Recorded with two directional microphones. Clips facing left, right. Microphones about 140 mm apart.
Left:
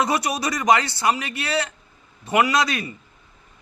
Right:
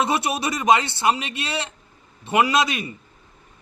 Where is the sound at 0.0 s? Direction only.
25° right (ahead or behind).